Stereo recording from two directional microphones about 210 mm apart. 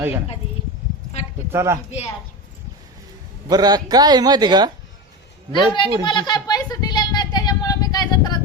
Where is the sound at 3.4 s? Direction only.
20° right (ahead or behind).